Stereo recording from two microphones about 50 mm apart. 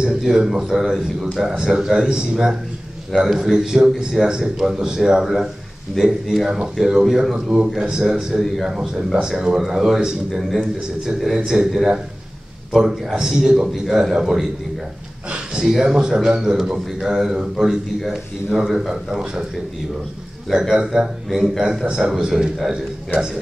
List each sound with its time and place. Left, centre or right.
0.2 s a man's voice: centre
15.2 s a man's voice: centre
20.5 s a man's voice: centre